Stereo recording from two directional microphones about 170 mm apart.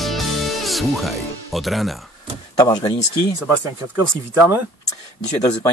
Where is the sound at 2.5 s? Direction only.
25° left (ahead or behind).